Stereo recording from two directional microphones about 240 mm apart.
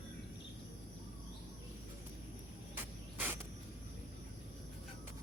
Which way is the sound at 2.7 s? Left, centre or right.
Centre.